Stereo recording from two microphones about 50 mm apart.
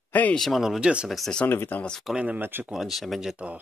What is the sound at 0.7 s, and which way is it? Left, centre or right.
Speech, right.